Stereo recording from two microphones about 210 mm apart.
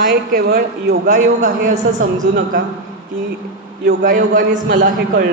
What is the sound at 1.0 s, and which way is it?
A woman's voice, 35° right (ahead or behind).